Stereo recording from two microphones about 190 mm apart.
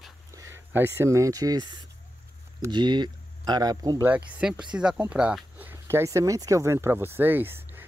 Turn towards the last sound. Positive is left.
turn(degrees=-10)  # may be behind; listen again after turning